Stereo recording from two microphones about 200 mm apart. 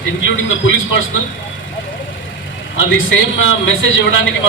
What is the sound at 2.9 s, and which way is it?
A man's voice, 70° left (ahead or behind).